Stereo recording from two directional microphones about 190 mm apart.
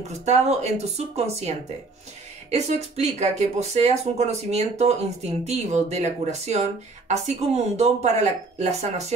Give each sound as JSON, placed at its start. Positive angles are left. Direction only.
{"t": 0.1, "sound": "speech", "side_deg": -35}